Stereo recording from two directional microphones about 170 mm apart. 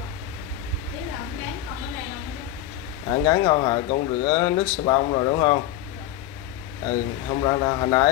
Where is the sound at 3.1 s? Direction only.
25° left (ahead or behind).